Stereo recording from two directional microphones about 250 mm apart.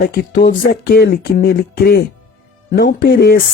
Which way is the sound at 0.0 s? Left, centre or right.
Left.